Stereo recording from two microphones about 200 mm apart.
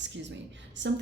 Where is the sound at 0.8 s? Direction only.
60° right (ahead or behind).